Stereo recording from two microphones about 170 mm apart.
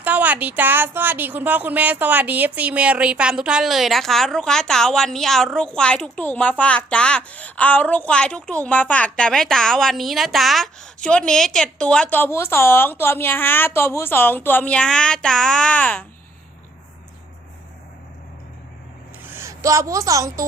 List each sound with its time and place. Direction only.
0.0 s a woman's voice: 10° right (ahead or behind); by 16.0 s 10° left (ahead or behind)
19.3 s a woman's voice: 15° right (ahead or behind)